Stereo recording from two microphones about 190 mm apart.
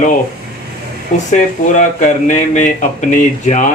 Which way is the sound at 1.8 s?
40° left (ahead or behind).